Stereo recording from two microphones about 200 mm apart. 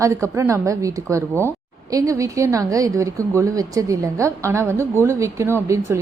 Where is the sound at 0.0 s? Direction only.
15° right (ahead or behind).